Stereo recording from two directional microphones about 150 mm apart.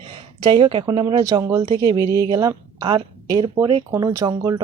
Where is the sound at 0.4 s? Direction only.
30° right (ahead or behind).